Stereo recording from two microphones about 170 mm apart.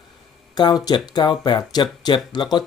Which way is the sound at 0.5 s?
25° left (ahead or behind).